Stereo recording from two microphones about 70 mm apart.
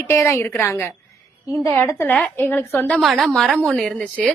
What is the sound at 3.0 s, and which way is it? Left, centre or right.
A woman's voice, centre.